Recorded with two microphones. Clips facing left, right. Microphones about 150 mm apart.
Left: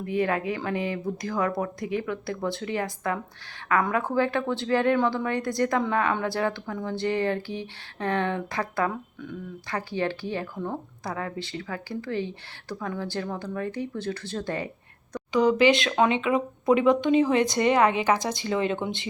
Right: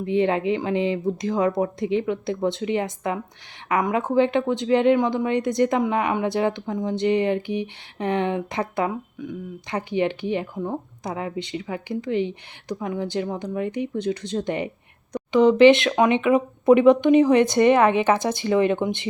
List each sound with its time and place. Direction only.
0.0 s speech: 25° right (ahead or behind)